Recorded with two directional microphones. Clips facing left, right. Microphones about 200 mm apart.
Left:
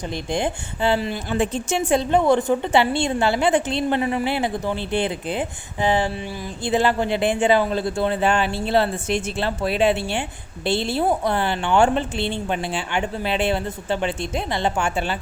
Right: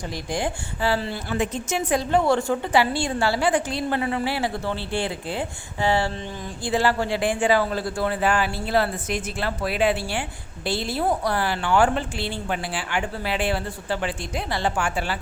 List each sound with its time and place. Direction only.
0.1 s a woman's voice: 25° left (ahead or behind)
1.4 s a woman's voice: 30° left (ahead or behind)